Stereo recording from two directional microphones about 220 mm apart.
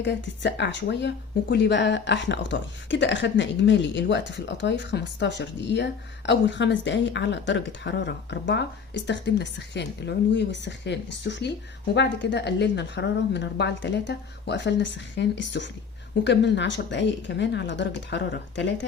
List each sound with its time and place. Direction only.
0.0 s speech: 55° left (ahead or behind)